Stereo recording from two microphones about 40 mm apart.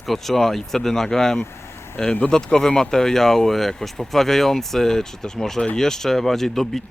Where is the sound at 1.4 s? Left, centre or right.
Left.